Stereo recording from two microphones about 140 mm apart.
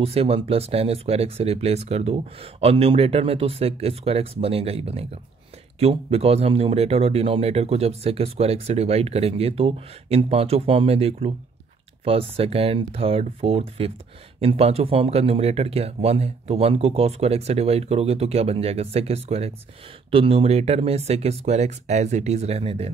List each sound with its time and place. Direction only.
0.0 s speech: 45° right (ahead or behind)